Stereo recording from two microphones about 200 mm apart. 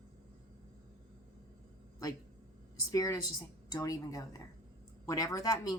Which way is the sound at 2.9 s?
15° left (ahead or behind).